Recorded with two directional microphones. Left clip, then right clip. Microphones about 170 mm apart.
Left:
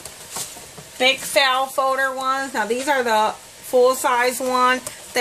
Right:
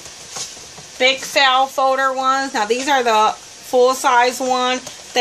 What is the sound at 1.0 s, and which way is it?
Speech, 5° right (ahead or behind).